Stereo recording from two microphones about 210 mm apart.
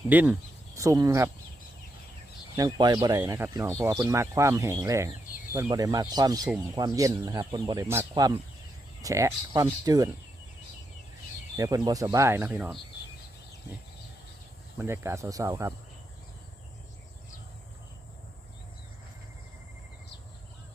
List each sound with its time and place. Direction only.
0.1 s speech: 10° right (ahead or behind)
2.6 s speech: 20° right (ahead or behind)
11.5 s speech: 15° right (ahead or behind)
14.8 s speech: 10° right (ahead or behind)